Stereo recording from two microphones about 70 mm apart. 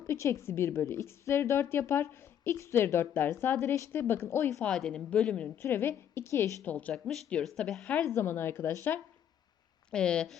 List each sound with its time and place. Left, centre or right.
0.1 s a woman's voice: left
4.7 s speech: centre
5.6 s a woman's voice: left
6.7 s speech: centre
6.9 s speech: centre
8.0 s a woman's voice: left
9.9 s speech: centre